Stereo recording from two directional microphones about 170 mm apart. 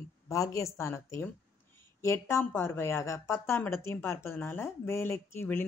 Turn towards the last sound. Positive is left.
turn(degrees=15)  # may be behind; listen again after turning